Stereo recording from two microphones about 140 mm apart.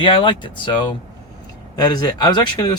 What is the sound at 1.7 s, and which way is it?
Speech, 30° left (ahead or behind).